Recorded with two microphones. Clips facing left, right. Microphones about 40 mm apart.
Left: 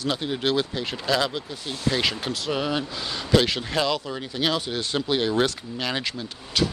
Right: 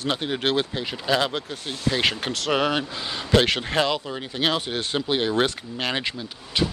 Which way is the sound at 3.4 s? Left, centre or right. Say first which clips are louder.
Right 2 dB; right.